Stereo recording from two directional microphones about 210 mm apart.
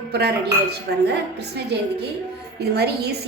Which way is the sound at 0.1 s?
50° right (ahead or behind).